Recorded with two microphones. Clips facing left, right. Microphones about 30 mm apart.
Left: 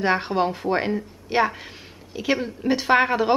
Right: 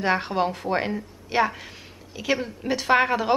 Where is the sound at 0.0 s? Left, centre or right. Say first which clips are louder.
Left 2 dB; centre.